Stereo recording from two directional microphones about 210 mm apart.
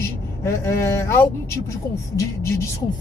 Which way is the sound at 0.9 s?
10° left (ahead or behind).